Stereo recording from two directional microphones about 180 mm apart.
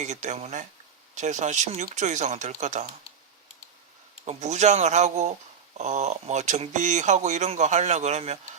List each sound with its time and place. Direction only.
0.0 s speech: 40° right (ahead or behind)
4.3 s speech: 40° right (ahead or behind)